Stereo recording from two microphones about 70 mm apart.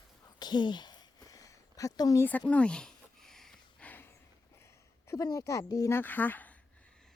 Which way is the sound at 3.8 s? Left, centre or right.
Left.